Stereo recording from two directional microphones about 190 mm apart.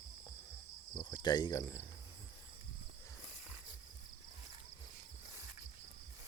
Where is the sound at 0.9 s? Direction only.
20° left (ahead or behind).